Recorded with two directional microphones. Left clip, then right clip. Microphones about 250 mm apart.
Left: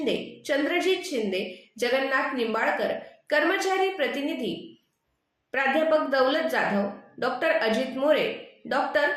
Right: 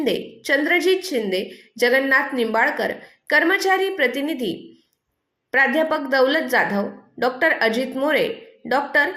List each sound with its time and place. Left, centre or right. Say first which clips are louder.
0.0 s a woman's voice: right 5 dB; right